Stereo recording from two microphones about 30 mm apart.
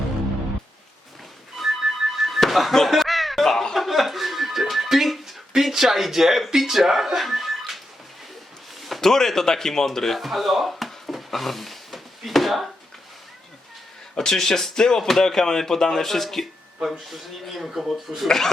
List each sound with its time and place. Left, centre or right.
1.5 s music: centre
5.7 s speech: centre
9.0 s speech: centre
10.2 s a sound: centre
14.2 s speech: centre